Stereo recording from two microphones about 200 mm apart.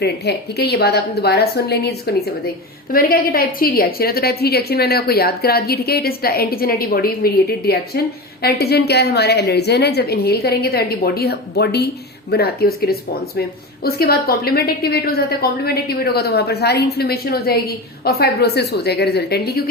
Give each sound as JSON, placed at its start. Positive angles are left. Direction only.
{"t": 0.0, "sound": "a woman's voice", "side_deg": 55}